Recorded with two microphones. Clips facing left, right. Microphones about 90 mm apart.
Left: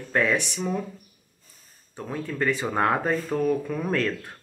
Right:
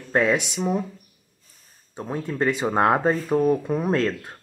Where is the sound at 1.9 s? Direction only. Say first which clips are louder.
Right 3 dB; 20° right (ahead or behind).